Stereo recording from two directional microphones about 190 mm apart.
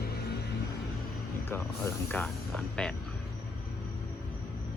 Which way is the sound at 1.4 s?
15° left (ahead or behind).